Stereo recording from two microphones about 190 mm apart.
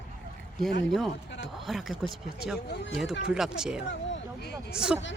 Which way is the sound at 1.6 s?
Centre (ahead or behind).